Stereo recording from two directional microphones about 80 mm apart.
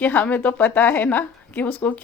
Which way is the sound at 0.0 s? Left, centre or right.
Left.